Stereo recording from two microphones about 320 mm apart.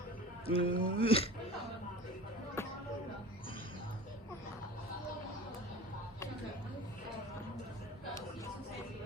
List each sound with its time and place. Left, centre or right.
0.4 s speech: centre
2.6 s music: centre